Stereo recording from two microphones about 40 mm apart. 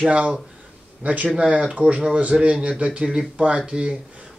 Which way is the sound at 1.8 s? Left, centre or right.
Right.